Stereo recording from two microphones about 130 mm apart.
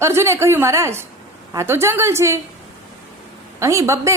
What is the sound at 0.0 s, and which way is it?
A woman's voice, 20° right (ahead or behind).